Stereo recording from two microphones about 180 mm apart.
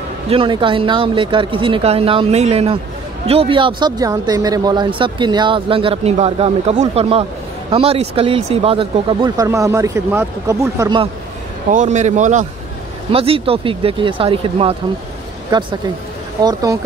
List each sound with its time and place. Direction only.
0.3 s speech: 30° right (ahead or behind)
11.7 s speech: 40° right (ahead or behind)
13.1 s speech: 30° right (ahead or behind)